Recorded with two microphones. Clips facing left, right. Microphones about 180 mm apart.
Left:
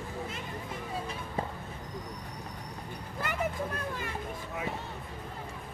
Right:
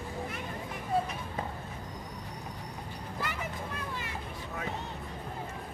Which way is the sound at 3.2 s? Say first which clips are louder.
Left 6 dB; 50° left (ahead or behind).